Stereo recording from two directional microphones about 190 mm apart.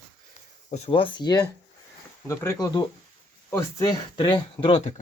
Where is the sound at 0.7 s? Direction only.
30° left (ahead or behind).